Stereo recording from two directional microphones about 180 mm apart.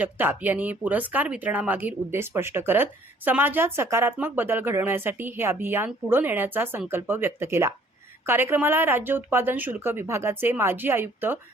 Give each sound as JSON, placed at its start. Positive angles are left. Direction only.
{"t": 0.0, "sound": "speech", "side_deg": -10}